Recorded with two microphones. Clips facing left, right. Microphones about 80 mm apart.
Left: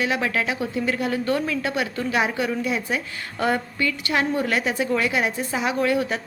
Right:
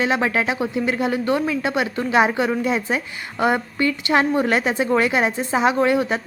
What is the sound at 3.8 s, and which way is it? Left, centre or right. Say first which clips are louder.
A woman's voice: right 5 dB; right.